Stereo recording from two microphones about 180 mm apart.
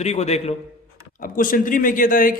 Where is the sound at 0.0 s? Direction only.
35° left (ahead or behind).